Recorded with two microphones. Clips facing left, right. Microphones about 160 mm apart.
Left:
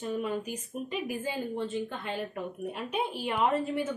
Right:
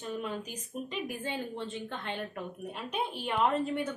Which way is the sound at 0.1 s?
10° left (ahead or behind).